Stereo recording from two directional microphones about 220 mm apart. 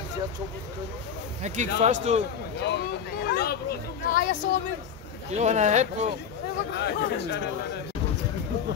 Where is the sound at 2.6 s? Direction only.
50° left (ahead or behind).